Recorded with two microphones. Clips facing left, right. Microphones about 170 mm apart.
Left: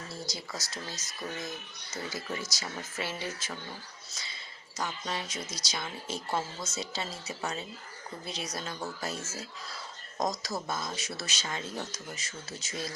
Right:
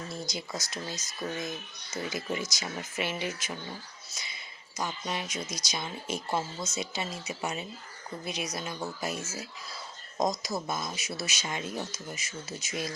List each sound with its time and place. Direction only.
0.1 s speech: 20° right (ahead or behind)